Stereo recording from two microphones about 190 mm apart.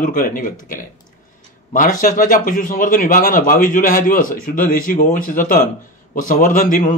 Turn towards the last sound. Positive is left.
turn(degrees=45)  # may be behind; listen again after turning